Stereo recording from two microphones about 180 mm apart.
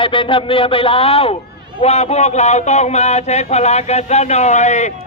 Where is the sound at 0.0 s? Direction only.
30° left (ahead or behind).